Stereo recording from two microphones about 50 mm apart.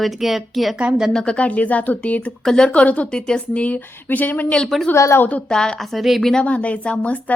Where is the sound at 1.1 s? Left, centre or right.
Centre.